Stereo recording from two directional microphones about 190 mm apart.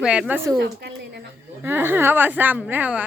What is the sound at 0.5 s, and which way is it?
Speech, 60° right (ahead or behind).